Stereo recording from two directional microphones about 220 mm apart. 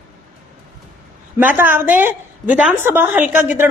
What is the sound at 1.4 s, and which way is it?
A woman's voice, 10° right (ahead or behind).